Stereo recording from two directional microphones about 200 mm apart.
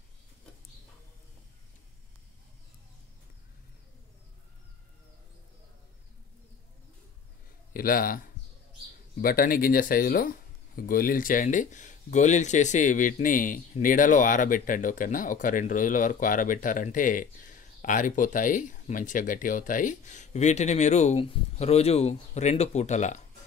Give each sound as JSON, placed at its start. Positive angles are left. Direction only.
{"t": 7.7, "sound": "speech", "side_deg": 45}